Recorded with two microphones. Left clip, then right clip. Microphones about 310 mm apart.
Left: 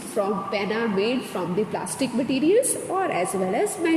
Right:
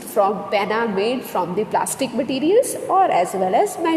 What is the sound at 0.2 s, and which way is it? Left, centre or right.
A woman's voice, right.